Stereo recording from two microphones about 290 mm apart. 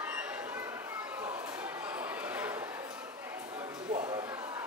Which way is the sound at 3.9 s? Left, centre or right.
Right.